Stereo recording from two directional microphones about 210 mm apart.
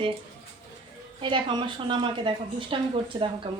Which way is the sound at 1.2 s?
20° right (ahead or behind).